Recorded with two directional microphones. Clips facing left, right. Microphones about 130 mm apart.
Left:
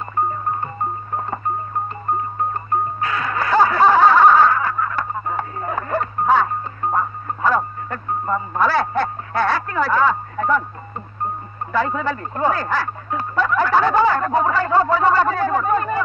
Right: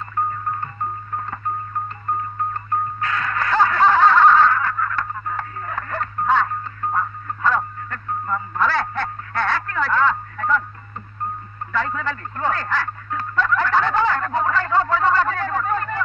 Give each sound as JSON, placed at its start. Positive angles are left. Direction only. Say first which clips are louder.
{"t": 0.1, "sound": "music", "louder": "left 3 dB", "side_deg": 20}
{"t": 2.5, "sound": "music", "louder": "left 3 dB", "side_deg": 15}
{"t": 6.8, "sound": "music", "louder": "left 3 dB", "side_deg": 25}
{"t": 7.4, "sound": "a sound", "louder": "left 2 dB", "side_deg": 10}
{"t": 10.3, "sound": "speech", "louder": "left 3 dB", "side_deg": 20}
{"t": 11.9, "sound": "speech", "louder": "left 4 dB", "side_deg": 15}
{"t": 13.4, "sound": "a sound", "louder": "left 2 dB", "side_deg": 10}